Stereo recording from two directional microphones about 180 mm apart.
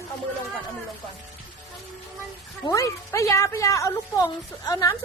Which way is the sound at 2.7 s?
20° left (ahead or behind).